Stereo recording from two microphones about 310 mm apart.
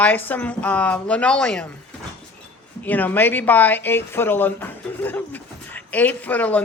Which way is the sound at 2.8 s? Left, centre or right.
Centre.